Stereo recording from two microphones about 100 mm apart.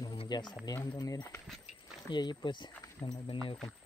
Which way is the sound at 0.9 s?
35° left (ahead or behind).